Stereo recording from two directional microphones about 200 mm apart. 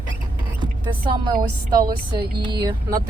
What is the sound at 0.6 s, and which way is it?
Speech, 25° right (ahead or behind).